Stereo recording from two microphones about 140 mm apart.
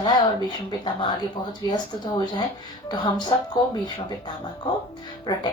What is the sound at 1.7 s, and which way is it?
Speech, 30° left (ahead or behind).